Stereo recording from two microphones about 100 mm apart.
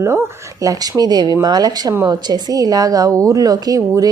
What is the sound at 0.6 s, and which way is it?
A woman's voice, 35° right (ahead or behind).